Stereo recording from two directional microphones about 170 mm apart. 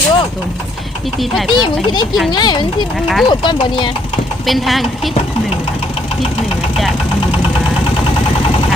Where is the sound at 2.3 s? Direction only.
25° left (ahead or behind).